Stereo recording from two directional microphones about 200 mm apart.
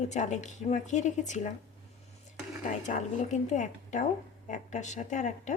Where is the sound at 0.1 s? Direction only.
35° left (ahead or behind).